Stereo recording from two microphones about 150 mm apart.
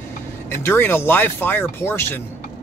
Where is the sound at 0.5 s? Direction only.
15° left (ahead or behind).